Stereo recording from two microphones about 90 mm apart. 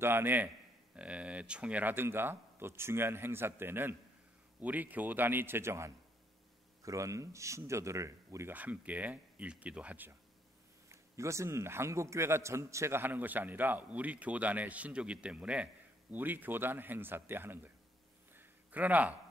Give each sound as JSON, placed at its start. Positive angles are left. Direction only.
{"t": 0.0, "sound": "a man's voice", "side_deg": -25}
{"t": 8.5, "sound": "speech", "side_deg": -15}
{"t": 10.9, "sound": "a man's voice", "side_deg": -35}
{"t": 18.3, "sound": "a sound", "side_deg": -20}